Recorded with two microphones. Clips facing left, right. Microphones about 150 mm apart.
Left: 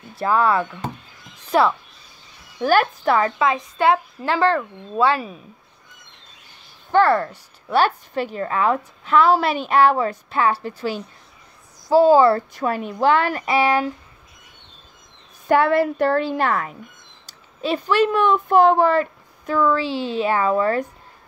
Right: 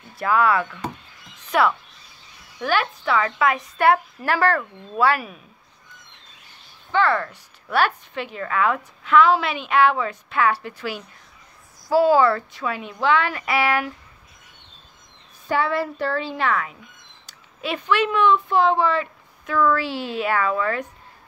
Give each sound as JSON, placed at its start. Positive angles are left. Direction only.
{"t": 0.2, "sound": "a woman's voice", "side_deg": 30}
{"t": 2.6, "sound": "a woman's voice", "side_deg": 45}
{"t": 3.3, "sound": "a woman's voice", "side_deg": 25}
{"t": 6.9, "sound": "a woman's voice", "side_deg": 40}
{"t": 13.5, "sound": "a woman's voice", "side_deg": 20}
{"t": 15.4, "sound": "a woman's voice", "side_deg": 55}
{"t": 19.5, "sound": "a woman's voice", "side_deg": 20}